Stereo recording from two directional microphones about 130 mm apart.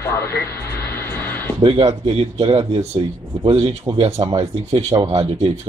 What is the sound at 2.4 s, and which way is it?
Speech, 40° right (ahead or behind).